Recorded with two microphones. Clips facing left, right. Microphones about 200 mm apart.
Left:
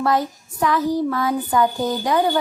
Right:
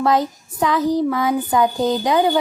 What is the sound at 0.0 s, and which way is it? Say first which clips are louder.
Child singing: right 2 dB; 20° right (ahead or behind).